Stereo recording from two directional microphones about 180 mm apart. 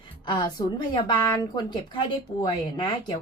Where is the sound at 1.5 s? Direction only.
25° left (ahead or behind).